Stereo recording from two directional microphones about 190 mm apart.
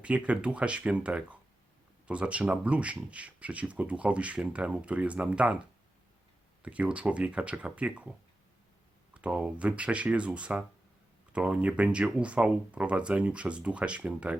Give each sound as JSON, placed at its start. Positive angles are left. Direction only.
{"t": 0.0, "sound": "speech", "side_deg": -5}
{"t": 9.1, "sound": "speech", "side_deg": -5}